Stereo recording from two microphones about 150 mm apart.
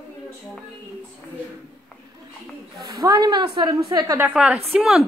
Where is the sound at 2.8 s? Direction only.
25° right (ahead or behind).